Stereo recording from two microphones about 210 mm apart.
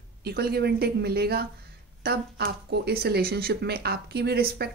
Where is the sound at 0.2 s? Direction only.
50° right (ahead or behind).